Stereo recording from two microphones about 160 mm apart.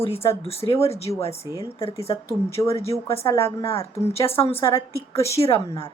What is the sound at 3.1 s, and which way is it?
Speech, 15° left (ahead or behind).